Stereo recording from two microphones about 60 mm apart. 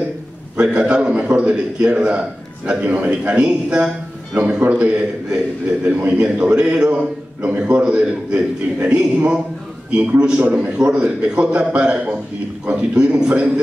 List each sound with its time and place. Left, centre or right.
0.6 s a man's voice: centre